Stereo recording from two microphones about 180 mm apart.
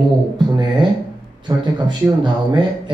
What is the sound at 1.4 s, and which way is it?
Speech, 25° right (ahead or behind).